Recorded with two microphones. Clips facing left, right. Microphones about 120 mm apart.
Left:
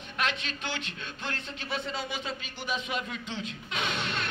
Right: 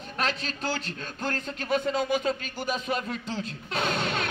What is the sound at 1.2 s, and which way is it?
Speech, 45° right (ahead or behind).